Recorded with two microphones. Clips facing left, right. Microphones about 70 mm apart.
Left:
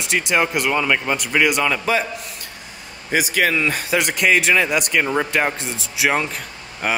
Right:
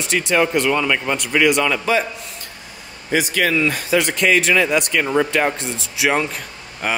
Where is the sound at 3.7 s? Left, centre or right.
Centre.